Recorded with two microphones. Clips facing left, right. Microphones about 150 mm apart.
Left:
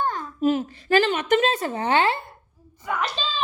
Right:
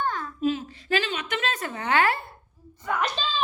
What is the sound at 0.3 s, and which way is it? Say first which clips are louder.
A woman's voice: left 7 dB; 45° left (ahead or behind).